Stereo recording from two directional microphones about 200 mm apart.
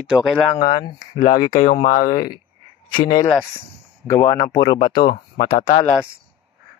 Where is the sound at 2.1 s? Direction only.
25° left (ahead or behind).